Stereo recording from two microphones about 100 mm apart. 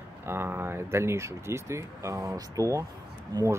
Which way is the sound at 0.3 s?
20° right (ahead or behind).